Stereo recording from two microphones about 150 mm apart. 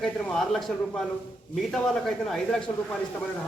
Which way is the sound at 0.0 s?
Centre (ahead or behind).